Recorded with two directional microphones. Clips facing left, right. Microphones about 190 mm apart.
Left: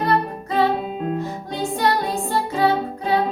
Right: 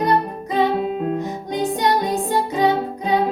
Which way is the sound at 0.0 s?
15° right (ahead or behind).